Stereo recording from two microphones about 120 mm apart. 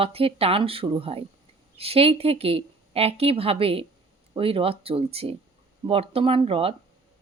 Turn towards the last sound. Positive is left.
turn(degrees=-50)  # may be behind; listen again after turning